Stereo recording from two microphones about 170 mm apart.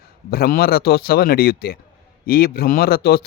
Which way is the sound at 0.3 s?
60° left (ahead or behind).